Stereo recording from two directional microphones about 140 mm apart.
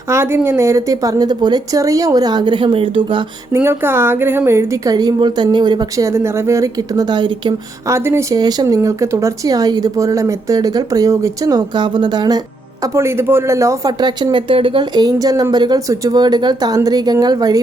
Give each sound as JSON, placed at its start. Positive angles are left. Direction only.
{"t": 0.1, "sound": "speech", "side_deg": -20}
{"t": 3.5, "sound": "speech", "side_deg": -15}
{"t": 7.9, "sound": "speech", "side_deg": -20}
{"t": 8.4, "sound": "speech", "side_deg": -30}
{"t": 12.8, "sound": "speech", "side_deg": -20}